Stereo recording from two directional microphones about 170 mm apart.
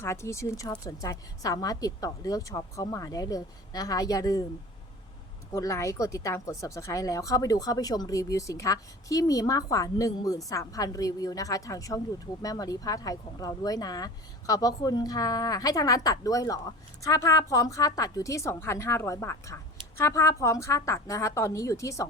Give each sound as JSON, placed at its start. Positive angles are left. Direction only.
{"t": 0.0, "sound": "speech", "side_deg": 15}
{"t": 5.5, "sound": "a woman's voice", "side_deg": 20}